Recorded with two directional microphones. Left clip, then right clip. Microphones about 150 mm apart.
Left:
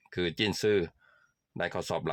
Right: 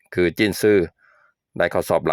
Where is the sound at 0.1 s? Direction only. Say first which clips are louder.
Right 11 dB; 45° right (ahead or behind).